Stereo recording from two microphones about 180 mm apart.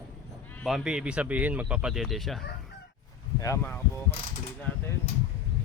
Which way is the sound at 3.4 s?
15° left (ahead or behind).